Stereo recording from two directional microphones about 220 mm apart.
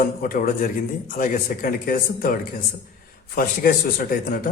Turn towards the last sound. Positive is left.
turn(degrees=40)  # may be behind; listen again after turning